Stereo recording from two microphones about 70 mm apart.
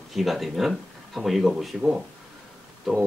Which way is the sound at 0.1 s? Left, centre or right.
Centre.